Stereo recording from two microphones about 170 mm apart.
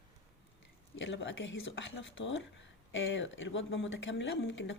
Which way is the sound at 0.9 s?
90° left.